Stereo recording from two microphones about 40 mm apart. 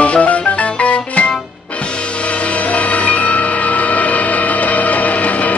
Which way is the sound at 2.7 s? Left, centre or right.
Left.